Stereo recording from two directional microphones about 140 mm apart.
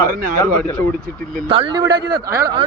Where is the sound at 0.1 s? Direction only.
85° right.